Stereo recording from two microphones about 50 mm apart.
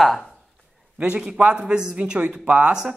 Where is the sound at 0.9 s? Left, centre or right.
Right.